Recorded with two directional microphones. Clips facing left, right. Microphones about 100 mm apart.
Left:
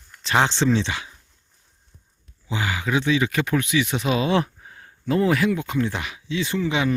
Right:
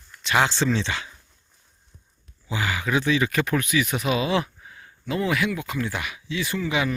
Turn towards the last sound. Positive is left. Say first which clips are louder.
# left 2 dB
turn(degrees=25)  # may be behind; listen again after turning